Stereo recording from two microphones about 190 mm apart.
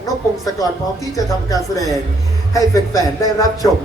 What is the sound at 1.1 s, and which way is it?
Speech, 20° left (ahead or behind).